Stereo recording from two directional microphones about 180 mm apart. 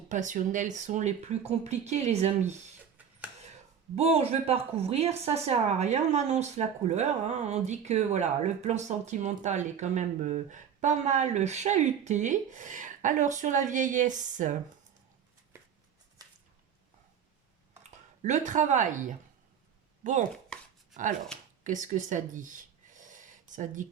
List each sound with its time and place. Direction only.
0.1 s speech: 45° right (ahead or behind)
3.9 s speech: 35° right (ahead or behind)
16.2 s a sound: 20° right (ahead or behind)
17.9 s speech: 40° right (ahead or behind)
20.5 s chopping: 5° left (ahead or behind)
21.6 s a sound: 45° right (ahead or behind)